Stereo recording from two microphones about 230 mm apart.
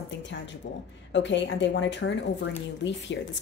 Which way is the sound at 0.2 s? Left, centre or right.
Left.